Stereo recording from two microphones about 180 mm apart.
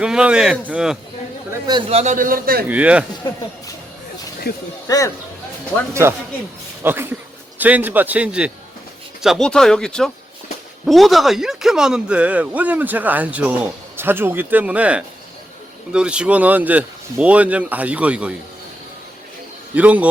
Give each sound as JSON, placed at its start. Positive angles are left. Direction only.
{"t": 0.0, "sound": "speech", "side_deg": -5}
{"t": 1.5, "sound": "a man's voice", "side_deg": -20}
{"t": 1.9, "sound": "a man's voice", "side_deg": -40}
{"t": 2.6, "sound": "speech", "side_deg": -10}
{"t": 4.5, "sound": "speech", "side_deg": 60}
{"t": 4.9, "sound": "speech", "side_deg": 20}
{"t": 5.9, "sound": "speech", "side_deg": -15}
{"t": 19.7, "sound": "speech", "side_deg": -10}